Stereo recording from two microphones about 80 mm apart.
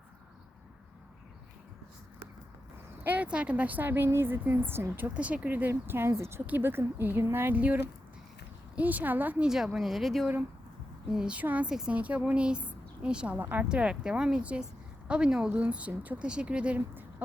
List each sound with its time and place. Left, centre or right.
3.0 s speech: centre
6.4 s speech: right
8.7 s speech: centre
9.7 s speech: centre
11.1 s speech: centre
11.7 s speech: centre
11.9 s a woman's voice: centre
13.7 s speech: centre